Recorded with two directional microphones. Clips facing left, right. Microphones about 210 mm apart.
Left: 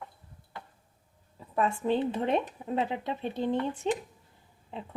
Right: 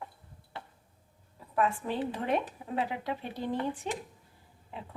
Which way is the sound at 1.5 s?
25° left (ahead or behind).